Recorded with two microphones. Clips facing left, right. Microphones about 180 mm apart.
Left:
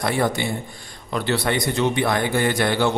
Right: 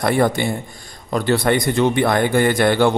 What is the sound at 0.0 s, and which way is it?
A man's voice, 50° right (ahead or behind).